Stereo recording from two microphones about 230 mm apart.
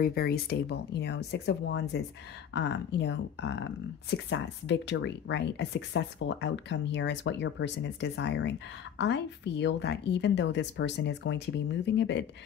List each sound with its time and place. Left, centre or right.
0.0 s speech: left